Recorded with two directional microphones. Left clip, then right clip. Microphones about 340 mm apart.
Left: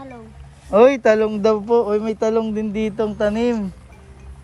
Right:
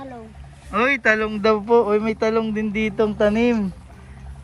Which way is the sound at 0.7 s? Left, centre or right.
Centre.